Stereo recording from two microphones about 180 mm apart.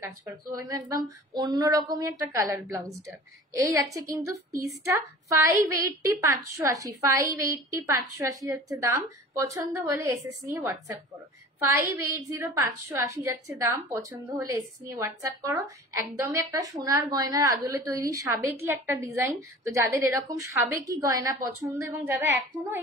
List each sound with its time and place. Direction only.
0.6 s a woman's voice: 20° right (ahead or behind)